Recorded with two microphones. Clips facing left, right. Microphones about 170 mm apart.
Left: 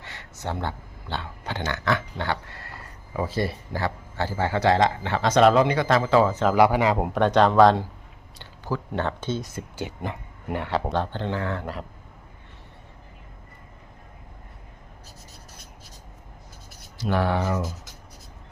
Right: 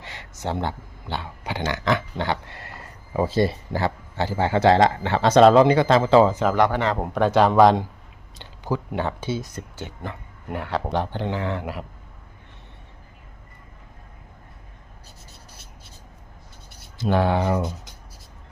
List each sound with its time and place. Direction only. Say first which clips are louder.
0.0 s speech: right 3 dB; 20° right (ahead or behind)
3.1 s speech: right 5 dB; 30° right (ahead or behind)
6.5 s speech: left 2 dB; 10° left (ahead or behind); by 9.5 s 10° right (ahead or behind)
9.6 s speech: left 3 dB; 10° left (ahead or behind)
10.5 s speech: left 1 dB; centre (ahead or behind)
10.9 s speech: right 1 dB; 15° right (ahead or behind)
17.0 s speech: right 3 dB; 25° right (ahead or behind)